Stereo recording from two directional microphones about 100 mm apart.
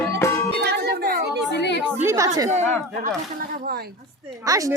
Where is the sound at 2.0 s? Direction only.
30° right (ahead or behind).